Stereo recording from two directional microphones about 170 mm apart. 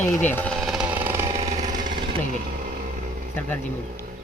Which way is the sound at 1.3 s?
45° right (ahead or behind).